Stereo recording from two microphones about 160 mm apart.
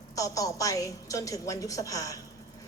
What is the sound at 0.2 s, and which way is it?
A woman's voice, 20° left (ahead or behind).